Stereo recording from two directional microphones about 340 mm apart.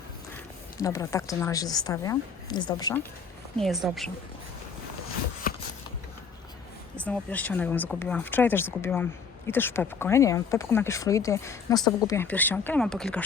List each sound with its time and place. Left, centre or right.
0.8 s speech: centre
3.6 s speech: centre
5.5 s a sound: left
6.9 s speech: centre